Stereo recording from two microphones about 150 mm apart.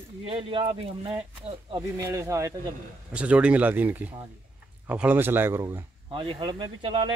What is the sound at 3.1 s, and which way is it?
Speech, 10° right (ahead or behind).